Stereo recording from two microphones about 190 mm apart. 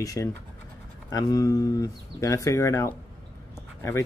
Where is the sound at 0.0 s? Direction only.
15° left (ahead or behind).